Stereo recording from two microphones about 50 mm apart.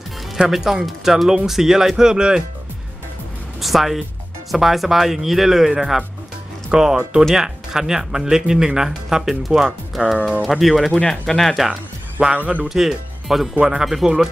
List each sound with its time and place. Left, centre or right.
0.5 s speech: centre
3.6 s speech: centre
12.2 s speech: right
12.6 s speech: centre